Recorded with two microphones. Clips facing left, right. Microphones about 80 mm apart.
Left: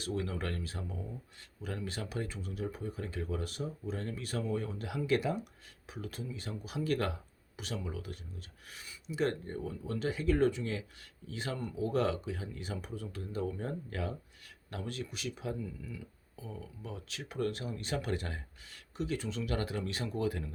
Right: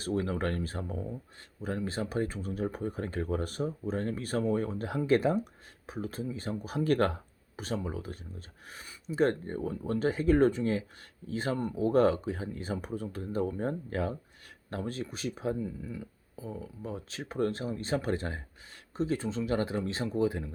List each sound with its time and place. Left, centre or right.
0.0 s speech: right